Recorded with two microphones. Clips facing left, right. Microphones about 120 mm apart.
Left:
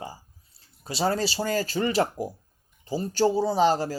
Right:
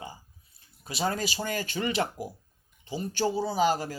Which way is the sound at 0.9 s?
30° left (ahead or behind).